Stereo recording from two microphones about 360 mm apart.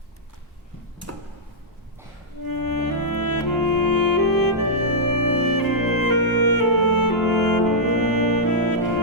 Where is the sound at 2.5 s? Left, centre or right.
Left.